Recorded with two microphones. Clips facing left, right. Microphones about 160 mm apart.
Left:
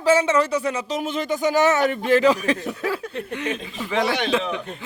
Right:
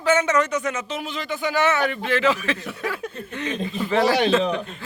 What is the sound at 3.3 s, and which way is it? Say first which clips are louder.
Speech: left 2 dB; 10° left (ahead or behind).